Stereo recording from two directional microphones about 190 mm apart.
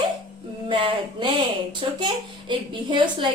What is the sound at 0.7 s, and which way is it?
Speech, 25° right (ahead or behind).